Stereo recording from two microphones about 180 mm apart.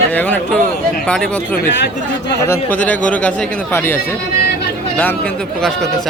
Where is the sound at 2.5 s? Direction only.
10° left (ahead or behind).